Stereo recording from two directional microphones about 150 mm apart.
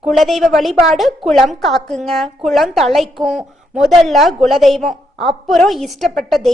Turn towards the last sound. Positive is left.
turn(degrees=0)  # may be behind; listen again after turning